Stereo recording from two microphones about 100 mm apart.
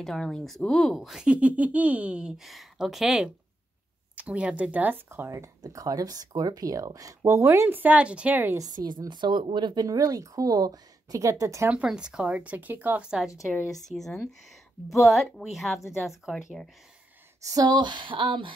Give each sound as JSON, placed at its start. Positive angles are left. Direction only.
{"t": 0.0, "sound": "speech", "side_deg": 5}
{"t": 8.5, "sound": "speech", "side_deg": -35}
{"t": 11.7, "sound": "a woman's voice", "side_deg": -10}
{"t": 13.8, "sound": "speech", "side_deg": 5}
{"t": 17.4, "sound": "a sound", "side_deg": -35}